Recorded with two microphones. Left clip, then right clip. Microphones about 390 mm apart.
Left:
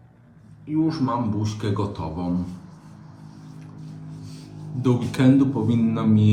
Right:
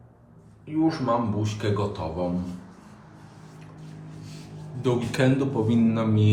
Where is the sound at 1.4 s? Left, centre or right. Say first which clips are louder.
Even; centre.